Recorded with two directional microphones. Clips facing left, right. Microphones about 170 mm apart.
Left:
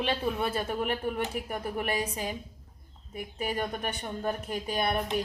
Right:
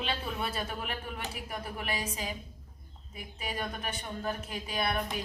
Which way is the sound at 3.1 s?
50° left (ahead or behind).